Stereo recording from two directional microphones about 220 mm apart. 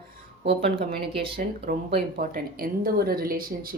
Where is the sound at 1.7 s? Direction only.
40° right (ahead or behind).